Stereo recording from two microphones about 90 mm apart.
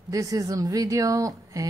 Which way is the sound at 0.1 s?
40° right (ahead or behind).